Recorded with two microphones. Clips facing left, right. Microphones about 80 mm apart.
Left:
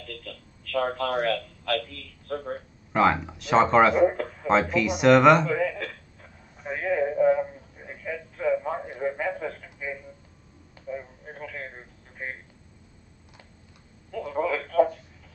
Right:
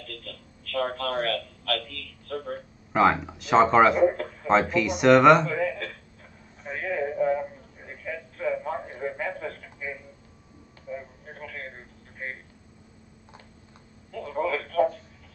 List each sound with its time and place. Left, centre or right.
0.7 s a man's voice: centre
2.9 s speech: centre
4.0 s speech: centre
6.6 s a sound: centre
10.9 s a sound: centre
14.1 s telephone: centre